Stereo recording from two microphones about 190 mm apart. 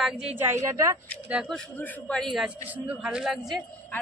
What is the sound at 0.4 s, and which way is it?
Speech, 15° right (ahead or behind).